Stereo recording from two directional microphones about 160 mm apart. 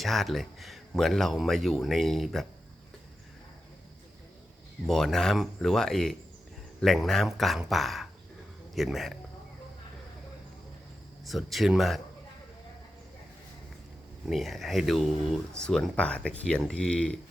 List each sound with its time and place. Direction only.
0.0 s speech: centre (ahead or behind)
4.9 s speech: centre (ahead or behind)
11.3 s speech: centre (ahead or behind)
14.3 s speech: centre (ahead or behind)